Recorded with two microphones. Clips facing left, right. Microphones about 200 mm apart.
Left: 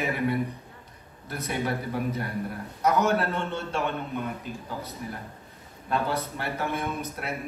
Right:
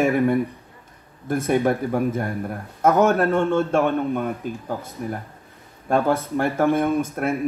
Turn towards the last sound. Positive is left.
turn(degrees=-50)  # may be behind; listen again after turning